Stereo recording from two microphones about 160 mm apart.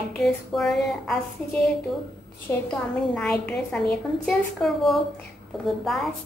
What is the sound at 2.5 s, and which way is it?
Speech, 15° left (ahead or behind).